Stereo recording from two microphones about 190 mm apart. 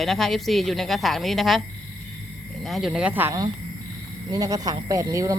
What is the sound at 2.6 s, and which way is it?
Speech, centre (ahead or behind).